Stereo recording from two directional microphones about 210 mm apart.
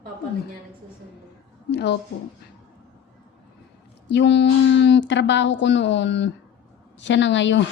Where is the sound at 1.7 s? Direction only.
55° left (ahead or behind).